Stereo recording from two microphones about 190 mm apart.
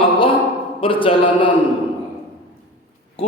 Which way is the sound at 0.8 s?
30° left (ahead or behind).